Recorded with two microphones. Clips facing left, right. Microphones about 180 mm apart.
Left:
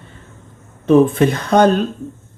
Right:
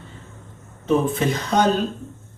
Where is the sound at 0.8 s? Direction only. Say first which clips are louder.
Left 8 dB; 60° left (ahead or behind).